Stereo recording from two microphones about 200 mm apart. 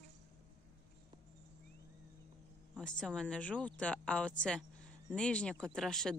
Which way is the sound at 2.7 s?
5° left (ahead or behind).